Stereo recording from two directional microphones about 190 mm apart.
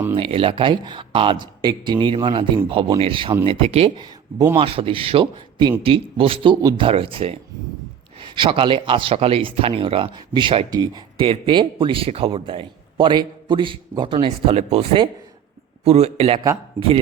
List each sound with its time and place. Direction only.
0.2 s speech: 30° right (ahead or behind)
8.4 s a man's voice: 25° right (ahead or behind)